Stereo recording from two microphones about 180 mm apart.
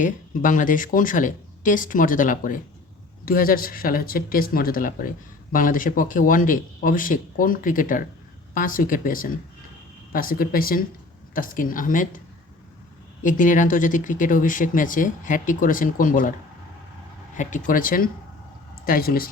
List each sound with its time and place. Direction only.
0.0 s speech: 45° left (ahead or behind)
13.2 s speech: 45° left (ahead or behind)
17.3 s speech: 45° left (ahead or behind)